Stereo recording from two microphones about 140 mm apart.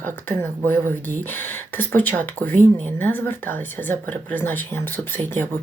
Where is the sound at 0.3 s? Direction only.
15° left (ahead or behind).